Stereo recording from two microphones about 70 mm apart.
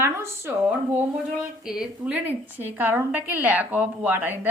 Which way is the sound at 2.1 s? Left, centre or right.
Right.